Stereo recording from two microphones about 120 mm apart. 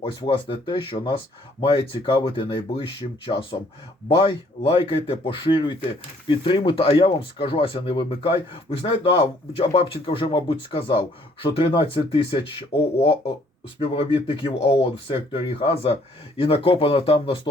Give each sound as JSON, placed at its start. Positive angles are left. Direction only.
{"t": 0.0, "sound": "speech", "side_deg": 45}
{"t": 4.6, "sound": "speech", "side_deg": 55}